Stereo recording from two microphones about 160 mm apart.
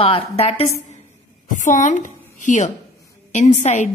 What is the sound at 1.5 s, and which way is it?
A woman's voice, 50° left (ahead or behind).